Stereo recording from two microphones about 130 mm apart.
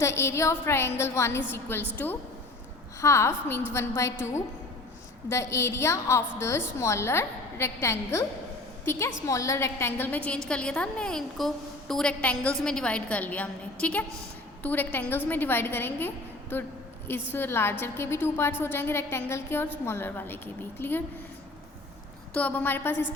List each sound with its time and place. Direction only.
0.0 s a woman's voice: 20° left (ahead or behind)
22.4 s a woman's voice: 15° left (ahead or behind)